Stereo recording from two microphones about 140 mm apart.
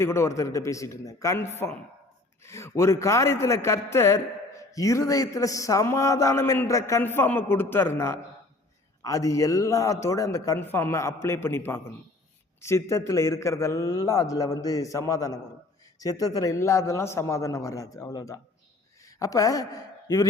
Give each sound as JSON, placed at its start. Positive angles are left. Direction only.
{"t": 0.0, "sound": "a man's voice", "side_deg": 20}